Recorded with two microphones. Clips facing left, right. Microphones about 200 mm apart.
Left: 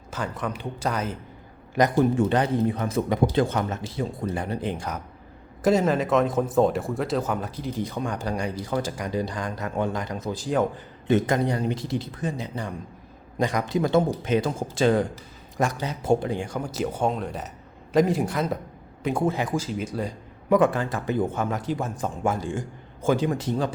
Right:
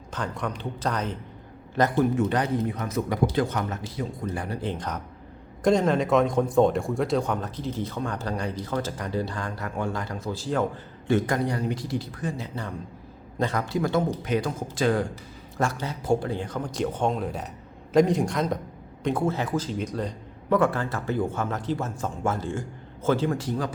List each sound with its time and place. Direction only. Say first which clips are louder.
0.1 s speech: left 1 dB; 5° left (ahead or behind)
2.1 s a man's voice: left 2 dB; 30° left (ahead or behind)